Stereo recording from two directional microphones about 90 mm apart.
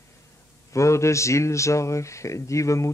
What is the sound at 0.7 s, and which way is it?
Speech, 35° left (ahead or behind).